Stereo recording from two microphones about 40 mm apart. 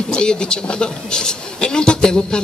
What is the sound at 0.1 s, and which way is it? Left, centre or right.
A man's voice, left.